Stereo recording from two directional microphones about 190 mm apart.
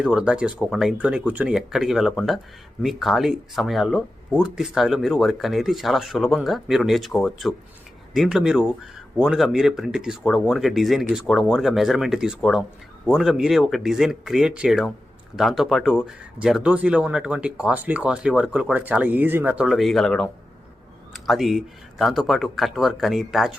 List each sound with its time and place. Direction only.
0.0 s speech: 5° right (ahead or behind)